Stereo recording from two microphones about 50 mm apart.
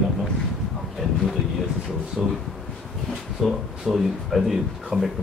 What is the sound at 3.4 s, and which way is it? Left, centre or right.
Speech, centre.